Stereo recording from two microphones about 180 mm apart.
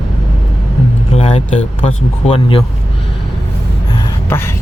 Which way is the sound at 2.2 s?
30° left (ahead or behind).